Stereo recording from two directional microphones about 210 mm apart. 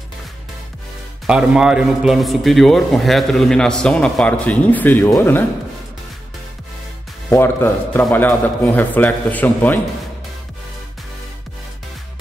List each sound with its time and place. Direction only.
1.2 s a man's voice: 5° right (ahead or behind)
7.2 s a man's voice: 10° left (ahead or behind)